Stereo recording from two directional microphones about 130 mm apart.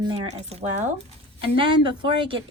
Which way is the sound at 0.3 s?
50° right (ahead or behind).